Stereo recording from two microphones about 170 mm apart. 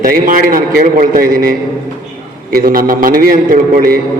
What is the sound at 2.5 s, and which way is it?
A man's voice, 60° right (ahead or behind).